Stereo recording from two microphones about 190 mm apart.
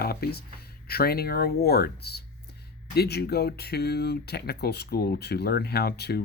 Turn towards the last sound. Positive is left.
turn(degrees=60)  # may be behind; listen again after turning